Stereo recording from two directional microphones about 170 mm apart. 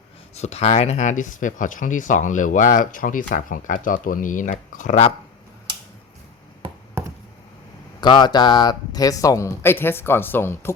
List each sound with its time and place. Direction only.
0.3 s speech: 40° left (ahead or behind)
8.0 s speech: 25° left (ahead or behind)